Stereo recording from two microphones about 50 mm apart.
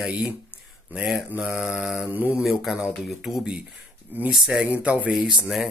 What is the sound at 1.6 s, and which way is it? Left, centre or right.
Speech, centre.